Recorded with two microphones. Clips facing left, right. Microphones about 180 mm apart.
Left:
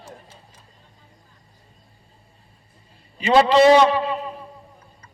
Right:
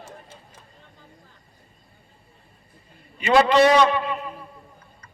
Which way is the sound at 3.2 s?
25° left (ahead or behind).